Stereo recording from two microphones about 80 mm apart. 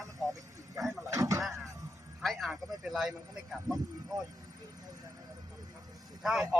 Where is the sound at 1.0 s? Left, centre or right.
Right.